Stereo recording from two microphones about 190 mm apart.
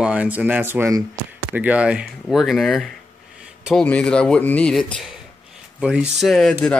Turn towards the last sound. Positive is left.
turn(degrees=0)  # may be behind; listen again after turning